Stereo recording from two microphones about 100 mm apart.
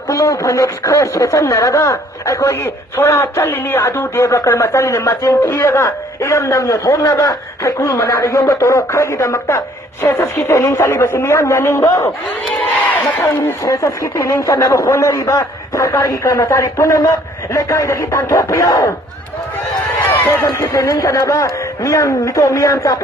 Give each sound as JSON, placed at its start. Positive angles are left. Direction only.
{"t": 0.1, "sound": "a woman's voice", "side_deg": 30}
{"t": 20.4, "sound": "speech", "side_deg": 35}